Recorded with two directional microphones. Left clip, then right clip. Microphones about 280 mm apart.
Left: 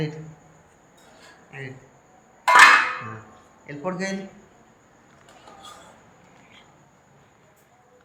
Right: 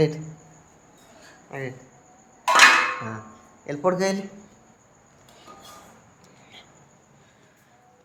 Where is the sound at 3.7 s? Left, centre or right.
Centre.